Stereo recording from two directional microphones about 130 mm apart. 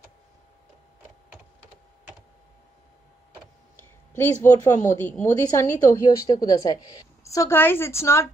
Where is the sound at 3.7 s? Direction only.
15° left (ahead or behind).